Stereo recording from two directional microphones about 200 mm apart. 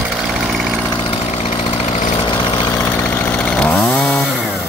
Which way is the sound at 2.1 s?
25° left (ahead or behind).